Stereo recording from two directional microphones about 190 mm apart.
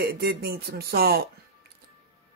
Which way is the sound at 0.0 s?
55° right (ahead or behind).